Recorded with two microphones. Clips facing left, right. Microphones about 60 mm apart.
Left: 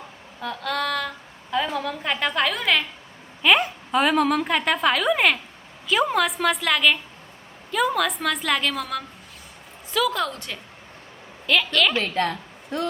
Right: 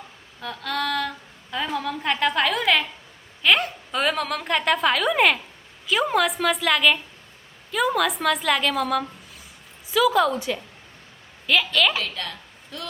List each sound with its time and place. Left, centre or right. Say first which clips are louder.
0.4 s a woman's voice: left 1 dB; centre
11.9 s a woman's voice: left 6 dB; left